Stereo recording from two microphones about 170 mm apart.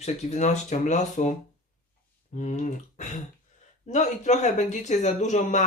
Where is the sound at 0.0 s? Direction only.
40° left (ahead or behind).